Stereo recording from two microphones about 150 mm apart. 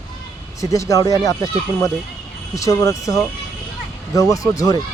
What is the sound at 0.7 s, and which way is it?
Speech, 20° left (ahead or behind).